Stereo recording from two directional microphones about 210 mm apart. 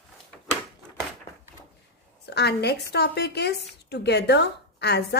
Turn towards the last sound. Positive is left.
turn(degrees=50)  # may be behind; listen again after turning